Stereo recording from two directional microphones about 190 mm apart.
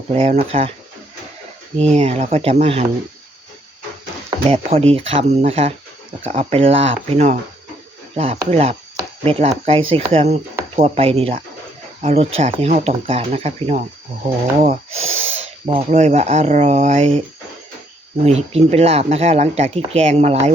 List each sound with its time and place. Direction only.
0.1 s speech: 30° right (ahead or behind)
1.8 s speech: 35° right (ahead or behind)
4.4 s speech: 35° right (ahead or behind)
18.2 s speech: 35° right (ahead or behind)